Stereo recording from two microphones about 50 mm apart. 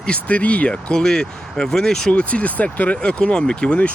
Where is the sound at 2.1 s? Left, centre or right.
Left.